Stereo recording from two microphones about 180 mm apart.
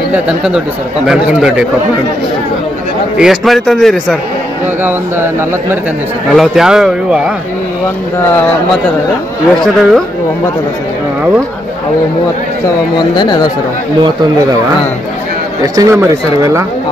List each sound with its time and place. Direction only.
1.0 s a man's voice: 5° right (ahead or behind)
3.2 s a man's voice: centre (ahead or behind)
4.8 s speech: 10° right (ahead or behind)
6.3 s a man's voice: centre (ahead or behind)
9.6 s a man's voice: centre (ahead or behind)
12.6 s speech: 25° left (ahead or behind)
15.6 s speech: 20° right (ahead or behind)